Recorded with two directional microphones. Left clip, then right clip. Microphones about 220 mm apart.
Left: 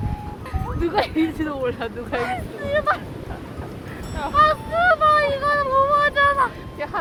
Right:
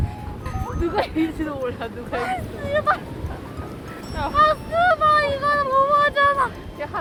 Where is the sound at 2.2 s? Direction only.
Centre (ahead or behind).